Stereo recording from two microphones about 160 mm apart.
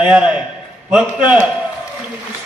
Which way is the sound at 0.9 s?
5° right (ahead or behind).